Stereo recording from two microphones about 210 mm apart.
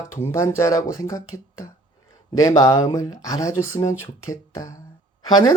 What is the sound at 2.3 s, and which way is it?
Speech, 15° left (ahead or behind).